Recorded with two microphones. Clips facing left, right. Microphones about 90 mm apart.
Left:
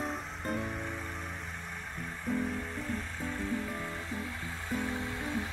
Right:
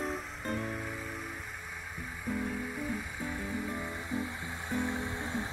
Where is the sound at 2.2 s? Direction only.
5° right (ahead or behind); by 5.4 s 20° right (ahead or behind).